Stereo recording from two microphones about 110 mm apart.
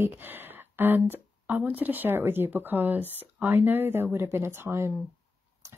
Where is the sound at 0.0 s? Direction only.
20° right (ahead or behind).